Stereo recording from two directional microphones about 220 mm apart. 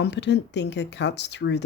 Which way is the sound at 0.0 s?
50° left (ahead or behind).